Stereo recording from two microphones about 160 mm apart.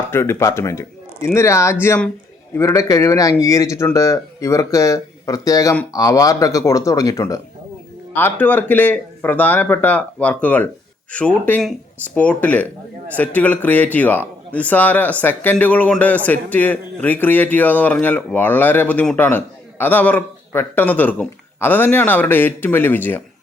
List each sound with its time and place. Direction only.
0.1 s speech: 15° left (ahead or behind)